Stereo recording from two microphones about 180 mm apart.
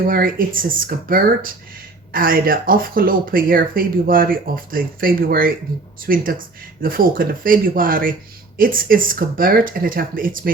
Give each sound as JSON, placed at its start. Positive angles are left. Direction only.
{"t": 0.1, "sound": "speech", "side_deg": -50}